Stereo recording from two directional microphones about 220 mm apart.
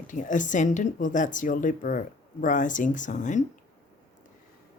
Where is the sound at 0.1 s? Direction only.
35° left (ahead or behind).